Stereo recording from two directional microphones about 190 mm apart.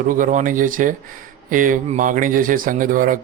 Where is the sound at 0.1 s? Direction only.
45° right (ahead or behind).